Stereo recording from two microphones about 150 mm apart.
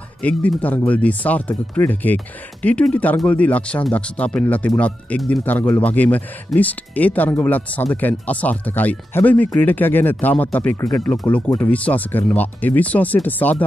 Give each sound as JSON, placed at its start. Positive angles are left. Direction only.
{"t": 0.2, "sound": "speech", "side_deg": 10}